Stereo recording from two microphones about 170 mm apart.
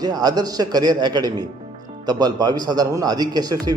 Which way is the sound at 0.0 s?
20° right (ahead or behind).